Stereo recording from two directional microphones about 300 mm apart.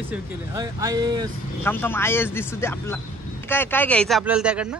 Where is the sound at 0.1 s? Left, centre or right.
Centre.